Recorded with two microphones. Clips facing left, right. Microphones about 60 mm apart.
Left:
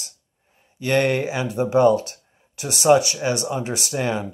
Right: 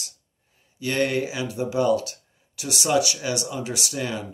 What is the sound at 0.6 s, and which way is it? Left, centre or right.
Speech, left.